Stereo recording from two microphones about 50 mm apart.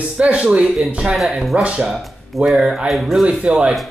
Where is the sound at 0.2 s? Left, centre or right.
Right.